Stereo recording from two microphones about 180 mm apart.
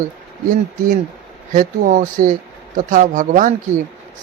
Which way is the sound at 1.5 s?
50° right (ahead or behind).